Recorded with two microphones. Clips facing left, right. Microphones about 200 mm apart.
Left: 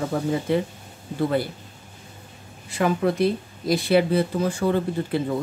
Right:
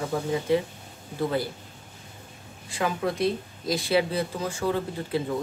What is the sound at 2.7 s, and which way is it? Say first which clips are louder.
Speech: left 6 dB; 60° left (ahead or behind).